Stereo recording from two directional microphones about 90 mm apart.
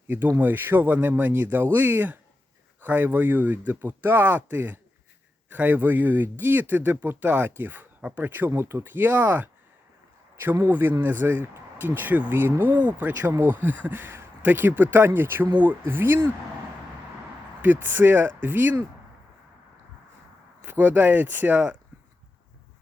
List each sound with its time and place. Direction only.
0.1 s speech: 20° right (ahead or behind)
17.6 s speech: 20° right (ahead or behind)
20.6 s speech: 20° right (ahead or behind)